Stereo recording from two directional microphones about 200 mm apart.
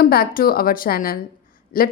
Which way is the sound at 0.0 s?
45° left (ahead or behind).